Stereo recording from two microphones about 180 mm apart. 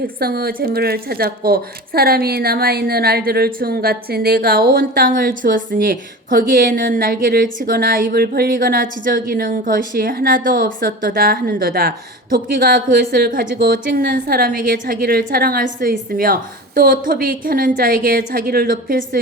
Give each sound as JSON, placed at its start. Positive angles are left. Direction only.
{"t": 0.2, "sound": "a woman's voice", "side_deg": -55}